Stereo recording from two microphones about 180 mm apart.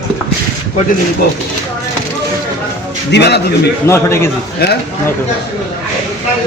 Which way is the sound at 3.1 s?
70° left (ahead or behind).